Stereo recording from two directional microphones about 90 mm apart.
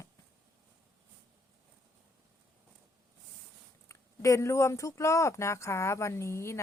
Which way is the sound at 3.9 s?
35° left (ahead or behind).